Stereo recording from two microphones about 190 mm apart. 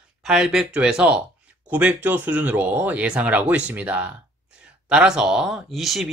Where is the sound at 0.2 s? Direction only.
5° right (ahead or behind).